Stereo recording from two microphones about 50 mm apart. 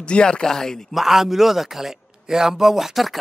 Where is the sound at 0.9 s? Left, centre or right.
Centre.